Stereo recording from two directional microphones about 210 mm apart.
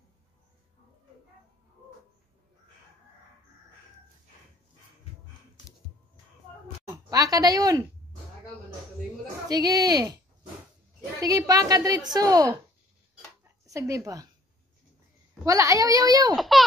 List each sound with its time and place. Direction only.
7.1 s speech: 15° right (ahead or behind)
9.5 s a woman's voice: 20° right (ahead or behind)
11.1 s a woman's voice: 15° right (ahead or behind)
13.4 s a sound: 15° right (ahead or behind)
15.4 s a woman's voice: 15° right (ahead or behind)
16.3 s a sound: centre (ahead or behind)